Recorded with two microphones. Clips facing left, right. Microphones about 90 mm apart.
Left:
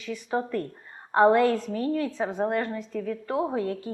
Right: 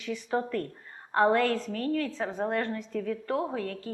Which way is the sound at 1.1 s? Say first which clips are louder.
Left 4 dB; 15° left (ahead or behind).